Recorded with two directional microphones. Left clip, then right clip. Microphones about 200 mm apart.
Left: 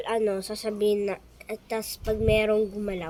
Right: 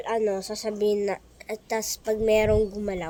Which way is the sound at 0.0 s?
5° right (ahead or behind).